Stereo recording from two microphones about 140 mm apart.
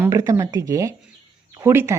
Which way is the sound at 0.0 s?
25° right (ahead or behind).